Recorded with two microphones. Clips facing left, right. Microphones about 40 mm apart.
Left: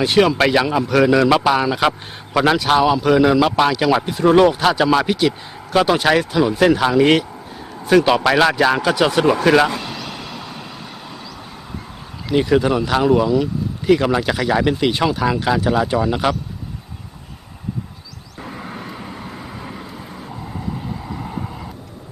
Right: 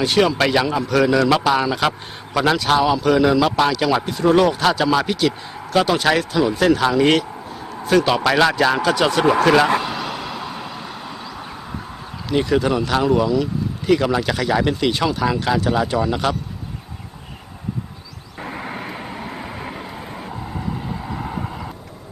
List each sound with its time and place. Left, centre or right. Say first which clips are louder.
0.0 s a man's voice: left 2 dB; centre
9.8 s vehicle: right 4 dB; centre
12.3 s a man's voice: left 2 dB; centre
18.3 s vehicle: right 2 dB; right
21.1 s vehicle: right 2 dB; centre